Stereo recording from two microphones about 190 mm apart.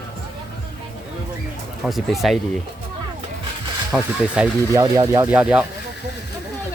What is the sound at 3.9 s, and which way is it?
Speech, 5° right (ahead or behind).